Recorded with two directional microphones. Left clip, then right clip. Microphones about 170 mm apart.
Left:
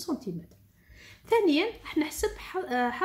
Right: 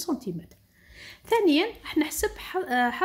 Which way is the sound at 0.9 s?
30° right (ahead or behind).